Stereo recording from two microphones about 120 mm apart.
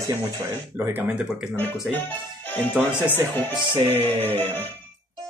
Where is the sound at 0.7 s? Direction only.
15° right (ahead or behind).